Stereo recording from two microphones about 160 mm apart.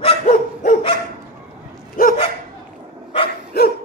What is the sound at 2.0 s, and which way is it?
Dog, 60° left (ahead or behind).